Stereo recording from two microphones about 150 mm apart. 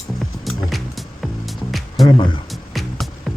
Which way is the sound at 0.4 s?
Centre (ahead or behind).